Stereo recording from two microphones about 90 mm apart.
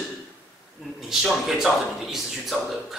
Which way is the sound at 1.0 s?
5° right (ahead or behind).